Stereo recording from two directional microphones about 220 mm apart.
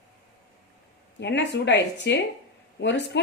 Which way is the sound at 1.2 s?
50° left (ahead or behind).